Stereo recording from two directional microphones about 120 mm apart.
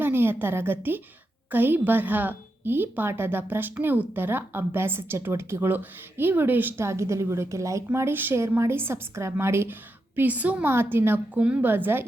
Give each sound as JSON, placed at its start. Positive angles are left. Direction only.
{"t": 0.0, "sound": "a woman's voice", "side_deg": -20}